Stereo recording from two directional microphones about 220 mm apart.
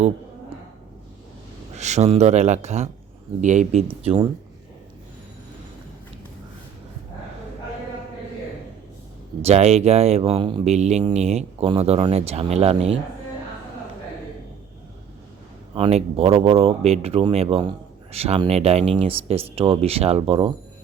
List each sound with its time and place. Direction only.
1.7 s speech: 30° right (ahead or behind)
9.4 s speech: 30° right (ahead or behind)
15.7 s speech: 25° right (ahead or behind)